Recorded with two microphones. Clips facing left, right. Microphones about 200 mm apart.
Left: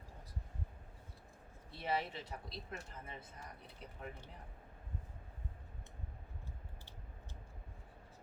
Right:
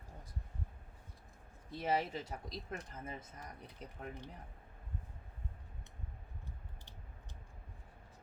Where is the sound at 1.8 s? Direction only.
40° right (ahead or behind).